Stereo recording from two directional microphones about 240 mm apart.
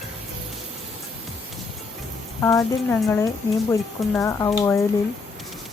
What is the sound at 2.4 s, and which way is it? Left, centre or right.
Speech, centre.